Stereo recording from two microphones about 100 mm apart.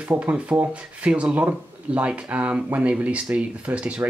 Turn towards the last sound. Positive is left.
turn(degrees=-10)  # may be behind; listen again after turning